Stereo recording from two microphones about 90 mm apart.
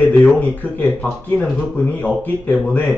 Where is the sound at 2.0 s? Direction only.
20° left (ahead or behind).